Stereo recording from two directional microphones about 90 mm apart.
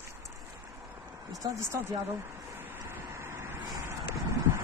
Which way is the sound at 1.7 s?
25° right (ahead or behind).